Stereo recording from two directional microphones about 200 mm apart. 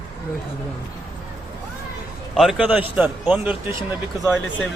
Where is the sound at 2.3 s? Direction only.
Centre (ahead or behind).